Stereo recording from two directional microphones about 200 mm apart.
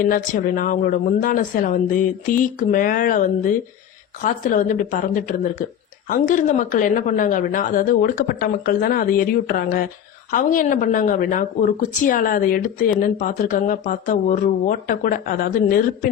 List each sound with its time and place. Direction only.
0.0 s a woman's voice: 45° left (ahead or behind)